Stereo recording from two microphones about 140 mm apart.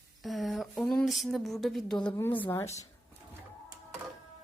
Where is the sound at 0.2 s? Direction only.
Centre (ahead or behind).